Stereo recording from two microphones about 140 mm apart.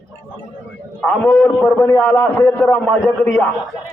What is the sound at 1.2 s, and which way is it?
A man's voice, 20° left (ahead or behind).